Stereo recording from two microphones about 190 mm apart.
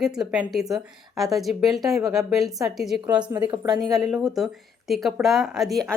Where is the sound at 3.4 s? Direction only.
20° right (ahead or behind).